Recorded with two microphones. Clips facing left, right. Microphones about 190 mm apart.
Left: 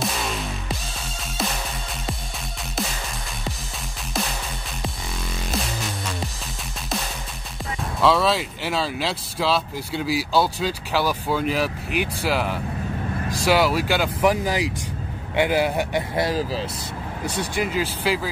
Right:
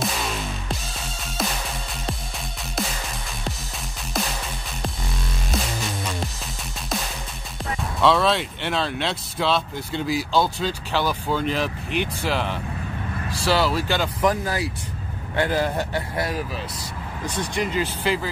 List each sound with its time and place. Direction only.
0.0 s music: centre (ahead or behind)
8.0 s speech: centre (ahead or behind)
16.2 s speech: 25° left (ahead or behind)
17.2 s speech: 10° left (ahead or behind)